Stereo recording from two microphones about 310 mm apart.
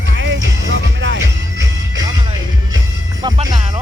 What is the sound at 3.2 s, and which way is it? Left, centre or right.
Music, centre.